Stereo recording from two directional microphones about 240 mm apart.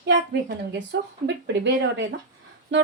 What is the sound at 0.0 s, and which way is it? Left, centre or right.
A woman's voice, right.